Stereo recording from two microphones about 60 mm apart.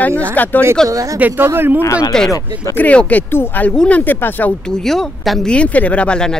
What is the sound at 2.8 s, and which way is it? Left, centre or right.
Speech, left.